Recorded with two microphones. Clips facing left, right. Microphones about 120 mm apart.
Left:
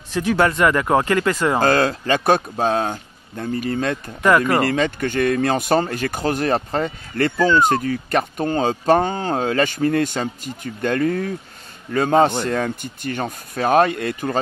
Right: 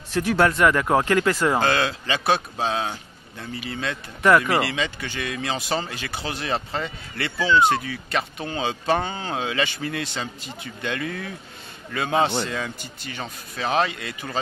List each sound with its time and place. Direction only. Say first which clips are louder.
0.4 s speech: left 1 dB; 5° left (ahead or behind)
1.6 s speech: left 5 dB; 40° left (ahead or behind)
4.2 s speech: left 1 dB; 10° left (ahead or behind)
4.5 s a man's voice: left 5 dB; 45° left (ahead or behind)
12.4 s speech: left 8 dB; 50° left (ahead or behind)